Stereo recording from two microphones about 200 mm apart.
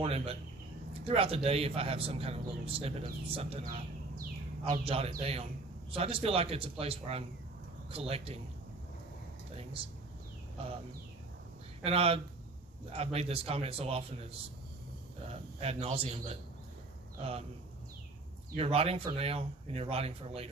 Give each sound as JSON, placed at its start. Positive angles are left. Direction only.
{"t": 0.0, "sound": "a sound", "side_deg": -30}
{"t": 1.0, "sound": "speech", "side_deg": -30}
{"t": 4.9, "sound": "speech", "side_deg": -30}
{"t": 9.8, "sound": "speech", "side_deg": -30}
{"t": 11.8, "sound": "speech", "side_deg": -30}
{"t": 17.2, "sound": "speech", "side_deg": -30}
{"t": 18.5, "sound": "speech", "side_deg": -30}